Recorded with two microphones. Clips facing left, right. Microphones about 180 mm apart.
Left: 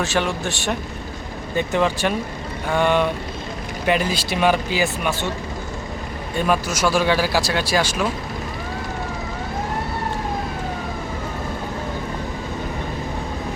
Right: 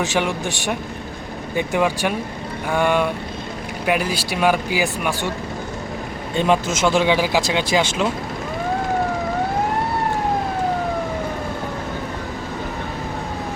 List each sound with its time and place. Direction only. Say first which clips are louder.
0.0 s speech: right 1 dB; 15° right (ahead or behind)
6.3 s speech: right 3 dB; 25° right (ahead or behind)